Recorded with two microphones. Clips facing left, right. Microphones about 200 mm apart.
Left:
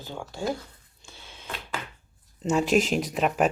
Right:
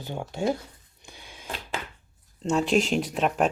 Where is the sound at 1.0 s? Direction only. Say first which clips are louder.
Right 1 dB; 15° right (ahead or behind).